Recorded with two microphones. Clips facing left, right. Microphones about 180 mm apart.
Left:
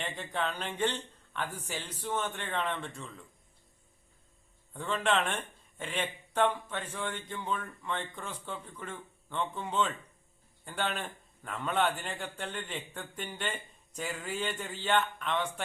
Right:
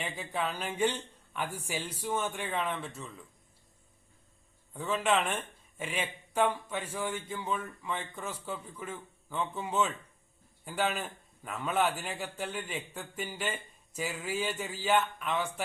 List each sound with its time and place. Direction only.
0.0 s a man's voice: 5° right (ahead or behind)
4.7 s a man's voice: 5° right (ahead or behind)